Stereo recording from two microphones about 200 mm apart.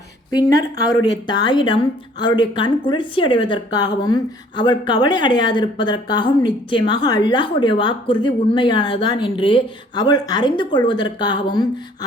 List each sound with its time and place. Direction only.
0.3 s a woman's voice: 20° left (ahead or behind)